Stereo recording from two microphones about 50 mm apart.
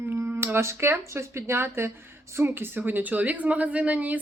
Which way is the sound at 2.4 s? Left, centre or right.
Right.